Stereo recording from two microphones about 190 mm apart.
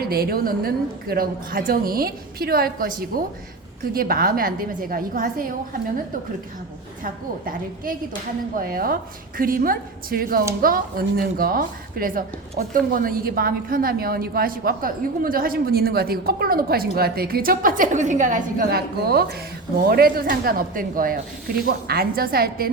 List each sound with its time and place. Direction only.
0.0 s a woman's voice: 55° right (ahead or behind)
3.9 s a woman's voice: 50° right (ahead or behind)
7.0 s a woman's voice: 45° right (ahead or behind)